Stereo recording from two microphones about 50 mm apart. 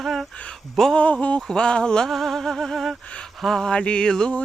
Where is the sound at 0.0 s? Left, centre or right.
Centre.